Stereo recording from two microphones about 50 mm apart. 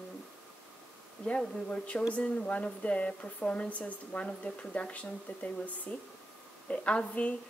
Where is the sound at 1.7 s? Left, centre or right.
Left.